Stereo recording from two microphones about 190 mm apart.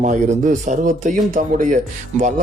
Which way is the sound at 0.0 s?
40° right (ahead or behind).